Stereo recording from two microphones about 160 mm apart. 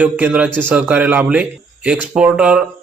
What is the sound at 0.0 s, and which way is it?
Speech, 10° right (ahead or behind).